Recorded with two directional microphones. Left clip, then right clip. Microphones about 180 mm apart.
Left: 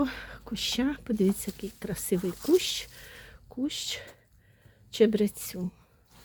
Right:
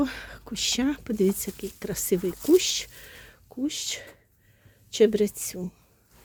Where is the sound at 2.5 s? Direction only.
20° right (ahead or behind).